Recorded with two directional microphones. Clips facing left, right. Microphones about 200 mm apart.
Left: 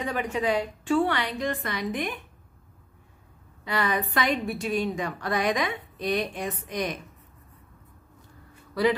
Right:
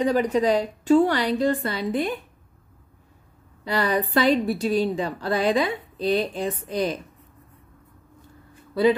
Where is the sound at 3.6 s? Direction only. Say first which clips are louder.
Right 4 dB; 35° right (ahead or behind).